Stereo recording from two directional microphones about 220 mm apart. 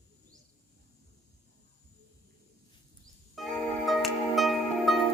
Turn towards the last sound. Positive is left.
turn(degrees=0)  # may be behind; listen again after turning